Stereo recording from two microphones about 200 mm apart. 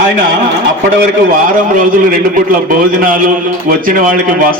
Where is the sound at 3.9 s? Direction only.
40° right (ahead or behind).